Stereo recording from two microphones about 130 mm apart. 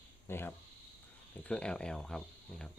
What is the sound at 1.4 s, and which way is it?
Speech, 10° left (ahead or behind).